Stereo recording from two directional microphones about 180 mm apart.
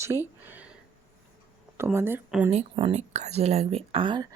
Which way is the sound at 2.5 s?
35° right (ahead or behind).